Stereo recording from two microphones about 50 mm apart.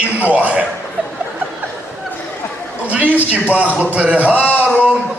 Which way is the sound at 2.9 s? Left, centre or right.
Right.